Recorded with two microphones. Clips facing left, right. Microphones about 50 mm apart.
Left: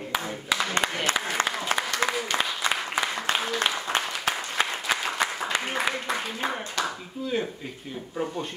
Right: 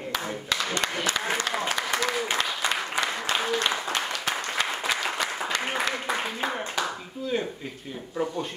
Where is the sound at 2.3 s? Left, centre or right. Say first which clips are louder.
Left 1 dB; left.